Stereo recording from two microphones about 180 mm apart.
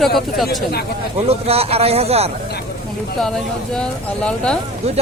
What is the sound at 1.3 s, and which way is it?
Speech, 35° right (ahead or behind).